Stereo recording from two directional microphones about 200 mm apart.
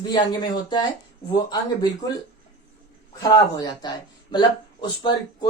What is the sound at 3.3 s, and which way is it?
Speech, 20° left (ahead or behind).